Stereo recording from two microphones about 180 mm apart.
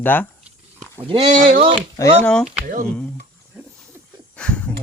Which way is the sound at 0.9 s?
30° right (ahead or behind).